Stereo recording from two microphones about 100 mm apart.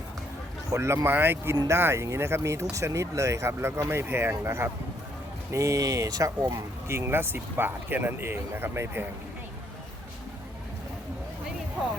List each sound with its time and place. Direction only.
0.7 s speech: 25° right (ahead or behind)